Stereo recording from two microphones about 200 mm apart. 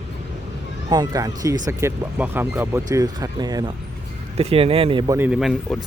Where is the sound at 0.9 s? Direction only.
20° right (ahead or behind).